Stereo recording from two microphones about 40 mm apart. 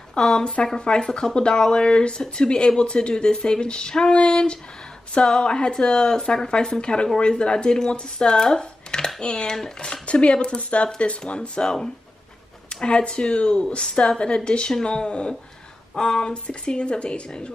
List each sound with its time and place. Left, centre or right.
0.1 s speech: centre
12.8 s speech: left